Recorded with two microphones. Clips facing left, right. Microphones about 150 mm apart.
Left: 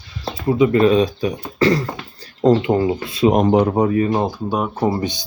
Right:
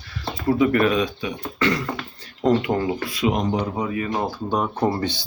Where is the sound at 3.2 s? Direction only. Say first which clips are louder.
Left 8 dB; 55° left (ahead or behind).